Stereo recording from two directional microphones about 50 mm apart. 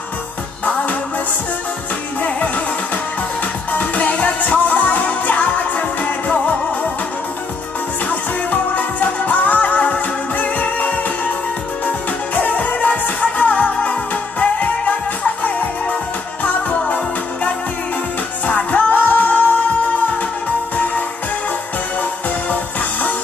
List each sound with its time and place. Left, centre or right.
2.2 s music: left
3.7 s music: left
8.5 s music: left
12.4 s music: left
18.5 s music: left